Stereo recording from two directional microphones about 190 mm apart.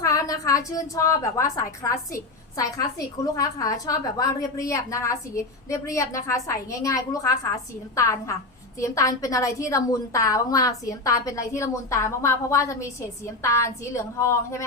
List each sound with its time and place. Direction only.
0.0 s a woman's voice: 20° left (ahead or behind)